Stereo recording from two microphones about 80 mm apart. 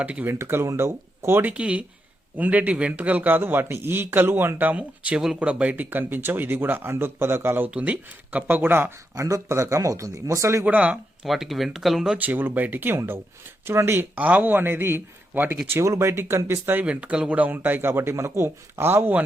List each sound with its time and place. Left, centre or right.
0.0 s speech: centre
0.3 s speech: right
1.5 s speech: centre
9.1 s speech: right
10.7 s speech: centre
11.2 s speech: centre
12.2 s speech: right
14.2 s speech: centre
16.8 s speech: centre